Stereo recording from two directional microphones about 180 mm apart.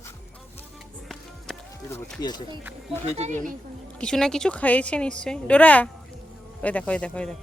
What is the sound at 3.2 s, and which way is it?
Speech, 40° right (ahead or behind).